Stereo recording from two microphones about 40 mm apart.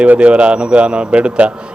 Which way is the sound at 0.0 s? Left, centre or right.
Right.